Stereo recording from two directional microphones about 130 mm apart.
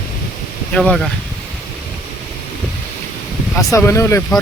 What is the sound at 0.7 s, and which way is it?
Speech, 5° left (ahead or behind).